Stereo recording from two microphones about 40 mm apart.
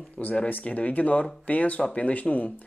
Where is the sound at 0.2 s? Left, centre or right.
Left.